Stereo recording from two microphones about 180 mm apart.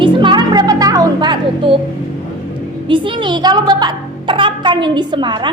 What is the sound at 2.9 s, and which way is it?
A woman's voice, 30° right (ahead or behind).